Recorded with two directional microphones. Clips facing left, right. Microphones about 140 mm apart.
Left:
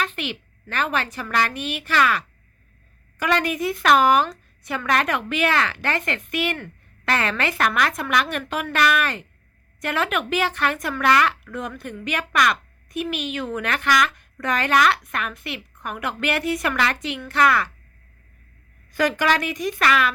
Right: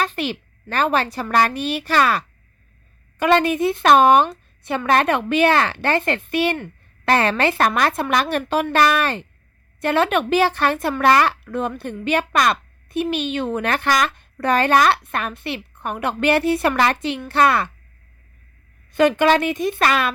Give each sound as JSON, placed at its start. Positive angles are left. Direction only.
{"t": 0.0, "sound": "a woman's voice", "side_deg": -35}
{"t": 18.9, "sound": "speech", "side_deg": -25}